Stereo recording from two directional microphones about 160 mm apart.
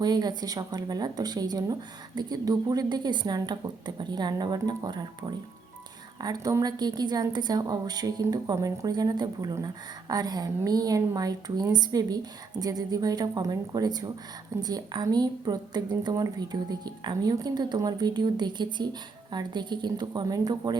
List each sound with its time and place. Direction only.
0.0 s a woman's voice: 25° right (ahead or behind)
6.1 s a woman's voice: 25° right (ahead or behind)